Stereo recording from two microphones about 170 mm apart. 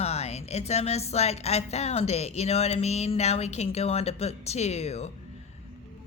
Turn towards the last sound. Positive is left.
turn(degrees=40)  # may be behind; listen again after turning